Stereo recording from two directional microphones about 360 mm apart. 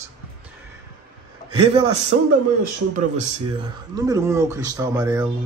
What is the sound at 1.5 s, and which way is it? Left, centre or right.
A man's voice, centre.